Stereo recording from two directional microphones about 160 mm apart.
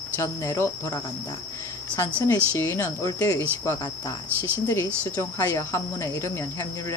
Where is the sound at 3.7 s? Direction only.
20° left (ahead or behind).